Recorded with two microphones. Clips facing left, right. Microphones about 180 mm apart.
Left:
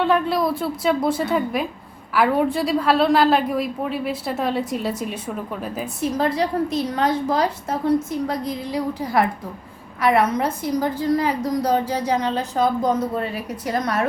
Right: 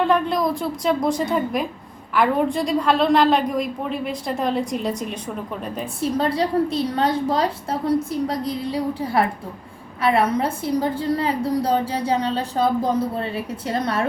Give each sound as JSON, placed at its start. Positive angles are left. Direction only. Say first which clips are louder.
{"t": 0.0, "sound": "a woman's voice", "louder": "even", "side_deg": 5}
{"t": 6.0, "sound": "a woman's voice", "louder": "even", "side_deg": -30}